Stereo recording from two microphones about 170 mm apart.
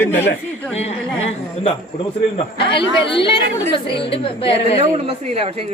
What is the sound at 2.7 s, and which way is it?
Speech, 30° left (ahead or behind).